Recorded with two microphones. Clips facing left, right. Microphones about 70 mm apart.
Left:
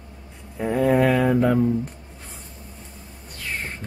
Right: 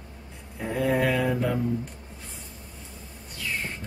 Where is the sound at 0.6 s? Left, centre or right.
Left.